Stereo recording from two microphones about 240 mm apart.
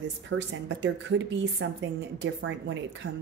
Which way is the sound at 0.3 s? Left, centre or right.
Right.